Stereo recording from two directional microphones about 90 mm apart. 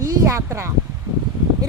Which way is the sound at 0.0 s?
35° right (ahead or behind).